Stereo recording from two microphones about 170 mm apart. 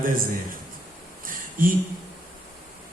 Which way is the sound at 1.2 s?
55° right (ahead or behind).